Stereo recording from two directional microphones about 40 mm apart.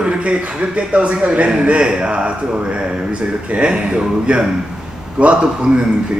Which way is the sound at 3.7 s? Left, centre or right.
Right.